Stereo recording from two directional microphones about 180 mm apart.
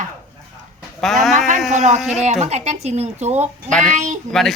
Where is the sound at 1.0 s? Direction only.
Centre (ahead or behind).